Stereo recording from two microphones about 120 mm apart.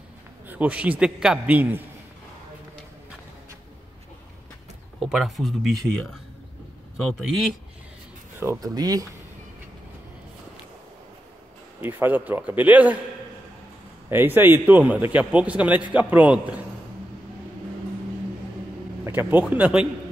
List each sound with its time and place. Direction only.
0.5 s speech: 10° right (ahead or behind)
5.0 s speech: centre (ahead or behind)
7.2 s speech: centre (ahead or behind)
8.5 s speech: 35° right (ahead or behind)
11.8 s speech: 15° right (ahead or behind)
14.1 s speech: 15° right (ahead or behind)
19.0 s speech: 15° right (ahead or behind)